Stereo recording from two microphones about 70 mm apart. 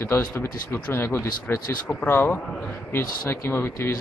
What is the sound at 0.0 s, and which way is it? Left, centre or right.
Speech, left.